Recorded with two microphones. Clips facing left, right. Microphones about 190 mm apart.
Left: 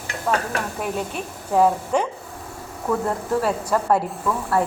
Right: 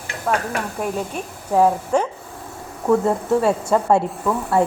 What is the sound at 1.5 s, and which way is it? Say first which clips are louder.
Speech: right 2 dB; 10° right (ahead or behind).